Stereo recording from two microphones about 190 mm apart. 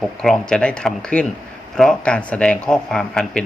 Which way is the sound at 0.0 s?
5° left (ahead or behind).